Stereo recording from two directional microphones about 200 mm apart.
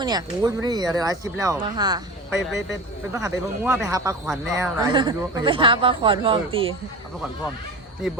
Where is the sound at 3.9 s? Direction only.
15° right (ahead or behind).